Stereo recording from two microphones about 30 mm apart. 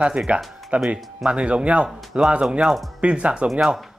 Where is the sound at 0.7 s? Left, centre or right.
Right.